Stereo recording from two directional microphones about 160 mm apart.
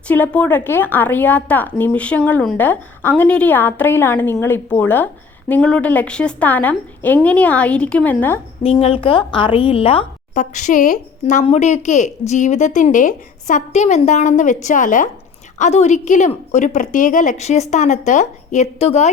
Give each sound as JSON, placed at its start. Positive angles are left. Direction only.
{"t": 0.1, "sound": "a woman's voice", "side_deg": 10}
{"t": 8.6, "sound": "a woman's voice", "side_deg": 35}
{"t": 10.3, "sound": "a woman's voice", "side_deg": 50}